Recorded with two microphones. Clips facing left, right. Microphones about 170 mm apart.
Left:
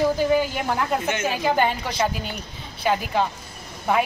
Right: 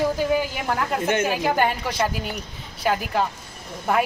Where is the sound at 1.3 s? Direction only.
5° right (ahead or behind).